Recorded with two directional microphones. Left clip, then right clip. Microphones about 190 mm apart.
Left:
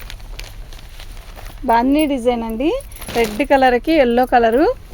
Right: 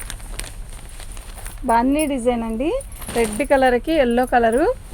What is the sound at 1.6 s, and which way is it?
Speech, 55° left (ahead or behind).